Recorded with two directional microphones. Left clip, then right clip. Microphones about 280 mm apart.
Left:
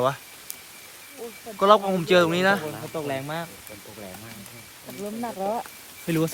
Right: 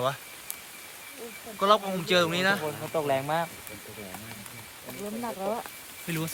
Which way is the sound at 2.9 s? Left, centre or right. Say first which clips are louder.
Right 4 dB; right.